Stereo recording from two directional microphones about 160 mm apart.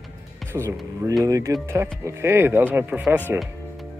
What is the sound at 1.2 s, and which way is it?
Speech, 20° right (ahead or behind).